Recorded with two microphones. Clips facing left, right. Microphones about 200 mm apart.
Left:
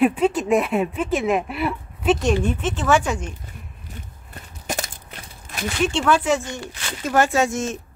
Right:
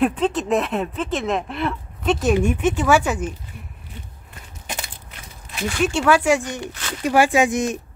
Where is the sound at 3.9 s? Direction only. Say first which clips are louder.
Left 4 dB; 40° left (ahead or behind).